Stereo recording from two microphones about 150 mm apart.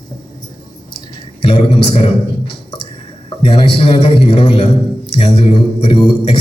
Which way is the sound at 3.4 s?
40° left (ahead or behind).